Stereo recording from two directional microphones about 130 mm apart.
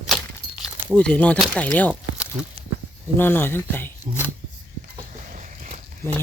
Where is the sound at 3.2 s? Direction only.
15° left (ahead or behind).